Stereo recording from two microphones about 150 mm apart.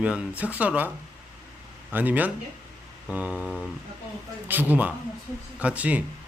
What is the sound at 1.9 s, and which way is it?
Speech, 10° right (ahead or behind).